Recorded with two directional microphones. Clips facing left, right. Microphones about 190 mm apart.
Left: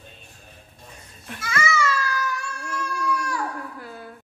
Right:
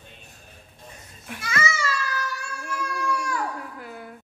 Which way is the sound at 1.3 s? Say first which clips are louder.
Even; 10° right (ahead or behind).